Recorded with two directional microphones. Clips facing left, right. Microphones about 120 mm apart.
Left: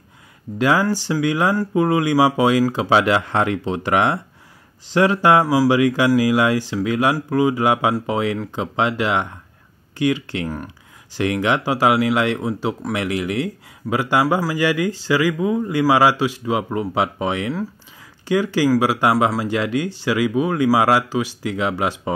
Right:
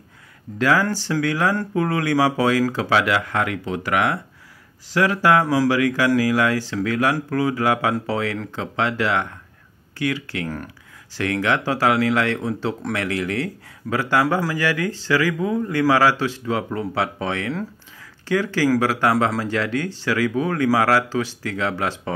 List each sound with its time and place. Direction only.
0.6 s speech: 20° left (ahead or behind)
14.2 s speech: 5° left (ahead or behind)
14.5 s speech: 15° left (ahead or behind)